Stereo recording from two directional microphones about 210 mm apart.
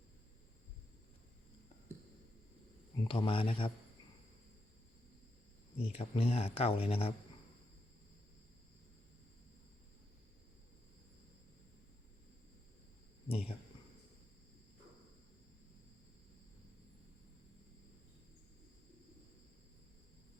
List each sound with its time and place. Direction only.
3.0 s speech: 25° left (ahead or behind)
5.8 s speech: 30° left (ahead or behind)
13.2 s speech: 30° left (ahead or behind)